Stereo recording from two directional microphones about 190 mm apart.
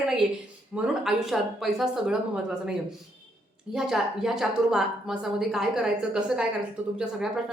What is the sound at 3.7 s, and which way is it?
A woman's voice, centre (ahead or behind).